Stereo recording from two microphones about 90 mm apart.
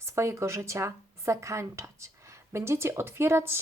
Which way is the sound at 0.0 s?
30° right (ahead or behind).